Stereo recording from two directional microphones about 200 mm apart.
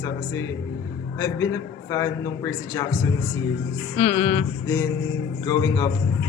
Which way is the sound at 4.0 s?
35° left (ahead or behind).